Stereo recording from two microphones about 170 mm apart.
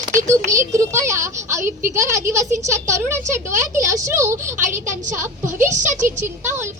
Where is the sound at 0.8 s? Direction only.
15° right (ahead or behind).